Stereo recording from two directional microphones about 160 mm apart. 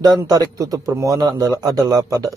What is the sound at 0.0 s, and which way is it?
A man's voice, 25° right (ahead or behind).